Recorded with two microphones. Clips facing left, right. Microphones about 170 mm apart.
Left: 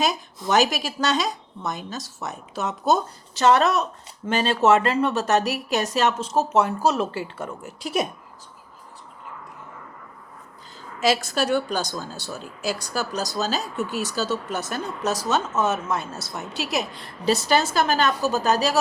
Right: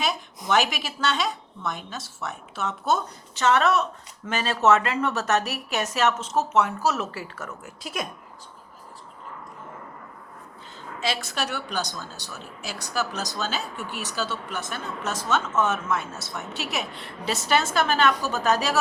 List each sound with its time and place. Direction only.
0.4 s speech: 40° left (ahead or behind)
11.2 s a woman's voice: 45° left (ahead or behind)